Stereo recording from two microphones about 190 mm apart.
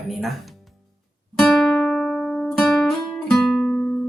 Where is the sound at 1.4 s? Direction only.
Centre (ahead or behind).